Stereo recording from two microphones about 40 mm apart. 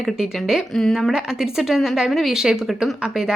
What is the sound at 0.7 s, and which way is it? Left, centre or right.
Speech, centre.